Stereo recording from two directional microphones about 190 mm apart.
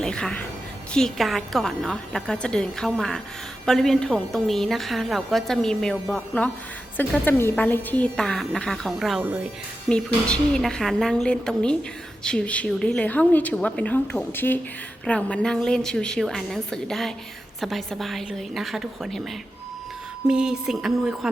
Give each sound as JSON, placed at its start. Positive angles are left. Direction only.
{"t": 0.0, "sound": "a woman's voice", "side_deg": 5}
{"t": 10.2, "sound": "a woman's voice", "side_deg": 5}
{"t": 20.2, "sound": "a woman's voice", "side_deg": -5}